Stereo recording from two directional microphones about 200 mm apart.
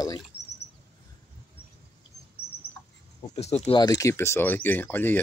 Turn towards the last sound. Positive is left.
turn(degrees=10)  # may be behind; listen again after turning